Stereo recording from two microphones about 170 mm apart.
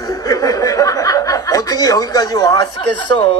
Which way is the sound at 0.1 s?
20° left (ahead or behind).